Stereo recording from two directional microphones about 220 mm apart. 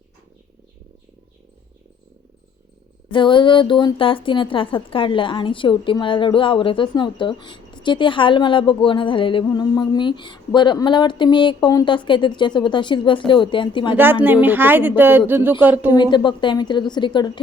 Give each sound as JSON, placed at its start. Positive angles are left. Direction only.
{"t": 3.1, "sound": "speech", "side_deg": 20}
{"t": 13.9, "sound": "a woman's voice", "side_deg": -10}
{"t": 15.9, "sound": "speech", "side_deg": 20}